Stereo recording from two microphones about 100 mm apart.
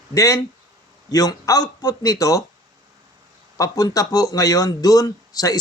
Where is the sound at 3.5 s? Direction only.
35° left (ahead or behind).